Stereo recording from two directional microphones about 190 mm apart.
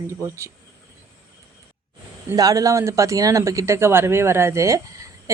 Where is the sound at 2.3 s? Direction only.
20° right (ahead or behind).